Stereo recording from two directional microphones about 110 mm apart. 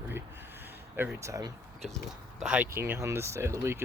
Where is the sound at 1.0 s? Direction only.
20° right (ahead or behind).